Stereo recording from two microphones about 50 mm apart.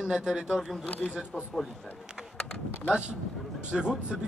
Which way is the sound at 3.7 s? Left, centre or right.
Centre.